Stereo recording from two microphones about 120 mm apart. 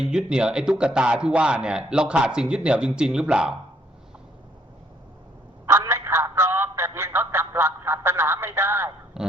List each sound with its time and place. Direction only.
0.0 s speech: 5° right (ahead or behind)
5.6 s telephone: 25° right (ahead or behind)
9.2 s a sound: 5° right (ahead or behind)